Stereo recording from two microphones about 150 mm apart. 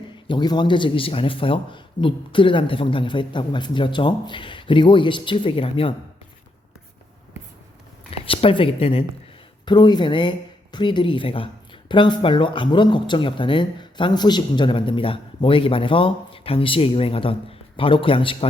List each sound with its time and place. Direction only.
0.3 s speech: 30° left (ahead or behind)
8.1 s speech: 40° left (ahead or behind)